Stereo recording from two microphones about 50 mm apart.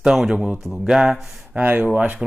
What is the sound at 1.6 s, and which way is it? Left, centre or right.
Speech, right.